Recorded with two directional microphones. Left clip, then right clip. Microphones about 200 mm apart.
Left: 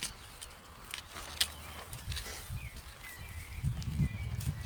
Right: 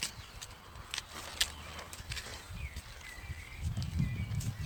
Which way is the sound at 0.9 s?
10° left (ahead or behind).